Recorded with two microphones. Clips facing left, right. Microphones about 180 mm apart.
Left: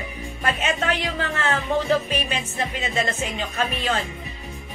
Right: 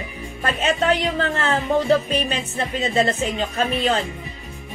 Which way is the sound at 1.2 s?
35° right (ahead or behind).